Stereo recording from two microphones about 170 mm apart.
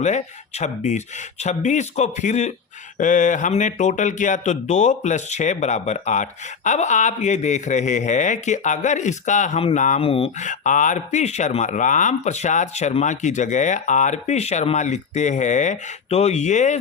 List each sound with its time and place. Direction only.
0.0 s a man's voice: 45° left (ahead or behind)